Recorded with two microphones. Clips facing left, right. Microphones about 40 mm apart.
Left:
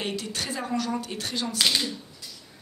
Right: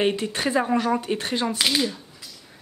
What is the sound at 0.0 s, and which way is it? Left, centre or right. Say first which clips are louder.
Speech: right 8 dB; right.